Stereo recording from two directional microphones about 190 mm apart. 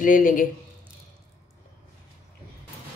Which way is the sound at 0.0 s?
45° left (ahead or behind).